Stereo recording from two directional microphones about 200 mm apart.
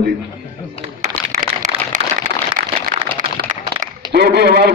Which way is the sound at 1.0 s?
40° right (ahead or behind).